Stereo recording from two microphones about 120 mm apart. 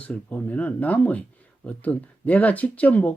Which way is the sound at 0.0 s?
10° left (ahead or behind).